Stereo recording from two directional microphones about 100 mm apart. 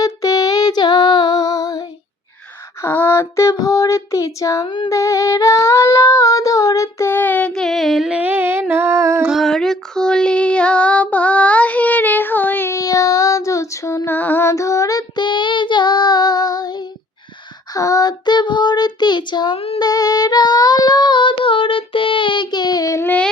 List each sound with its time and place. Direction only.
0.0 s music: 35° left (ahead or behind)
2.8 s a sound: 25° left (ahead or behind)
4.6 s female singing: 55° left (ahead or behind)
4.9 s singing: 30° left (ahead or behind)
7.5 s a sound: 5° left (ahead or behind)
8.2 s humming: 20° right (ahead or behind)
8.7 s a sound: 25° right (ahead or behind)
9.2 s female singing: centre (ahead or behind); by 14.5 s 20° left (ahead or behind)
14.5 s child singing: 30° left (ahead or behind); by 19.5 s 50° left (ahead or behind)
19.5 s female singing: 85° left
19.8 s female singing: 40° left (ahead or behind)
23.0 s child singing: 15° left (ahead or behind)